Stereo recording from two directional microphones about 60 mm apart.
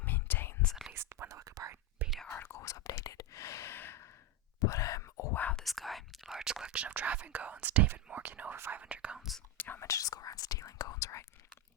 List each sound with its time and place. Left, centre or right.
0.0 s whispering: left
0.6 s whispering: centre
0.9 s whispering: right
2.0 s whispering: centre
2.3 s whispering: left
2.6 s whispering: left
4.6 s whispering: left
5.3 s whispering: left
5.6 s whispering: centre
6.3 s whispering: centre
9.6 s whispering: left
9.8 s whispering: left